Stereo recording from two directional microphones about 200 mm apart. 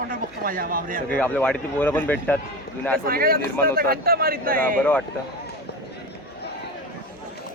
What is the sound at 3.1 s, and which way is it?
Speech, 45° right (ahead or behind).